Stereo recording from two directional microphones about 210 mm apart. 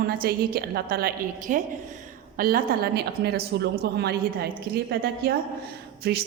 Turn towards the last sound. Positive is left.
turn(degrees=-50)  # may be behind; listen again after turning